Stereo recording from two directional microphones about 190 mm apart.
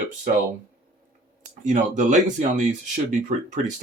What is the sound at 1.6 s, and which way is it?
Speech, 40° right (ahead or behind).